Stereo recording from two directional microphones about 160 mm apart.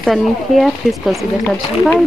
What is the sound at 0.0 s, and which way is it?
Speech, centre (ahead or behind).